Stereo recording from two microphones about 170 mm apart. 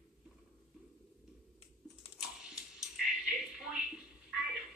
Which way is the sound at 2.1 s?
5° right (ahead or behind).